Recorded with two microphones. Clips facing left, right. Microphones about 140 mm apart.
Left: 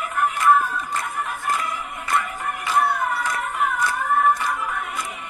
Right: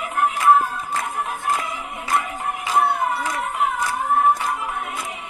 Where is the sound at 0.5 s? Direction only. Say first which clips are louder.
Right 1 dB; 25° right (ahead or behind).